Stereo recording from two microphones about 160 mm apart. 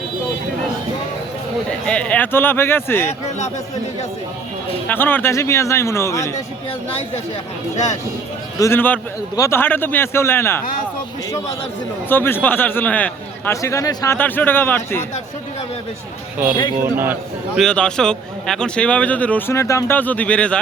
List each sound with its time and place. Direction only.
1.9 s a man's voice: 10° left (ahead or behind)
4.9 s a man's voice: 10° left (ahead or behind)
8.5 s a man's voice: 15° left (ahead or behind)
12.0 s a man's voice: 15° left (ahead or behind)
16.8 s a man's voice: 15° right (ahead or behind)
17.6 s a man's voice: 5° left (ahead or behind)